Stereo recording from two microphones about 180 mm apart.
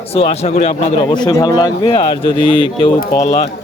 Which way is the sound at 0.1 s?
35° left (ahead or behind).